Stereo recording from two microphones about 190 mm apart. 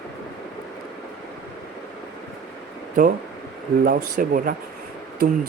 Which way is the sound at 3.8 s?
45° right (ahead or behind).